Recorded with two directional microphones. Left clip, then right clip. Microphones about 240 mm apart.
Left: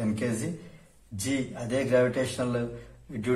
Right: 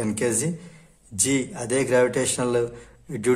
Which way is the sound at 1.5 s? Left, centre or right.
Right.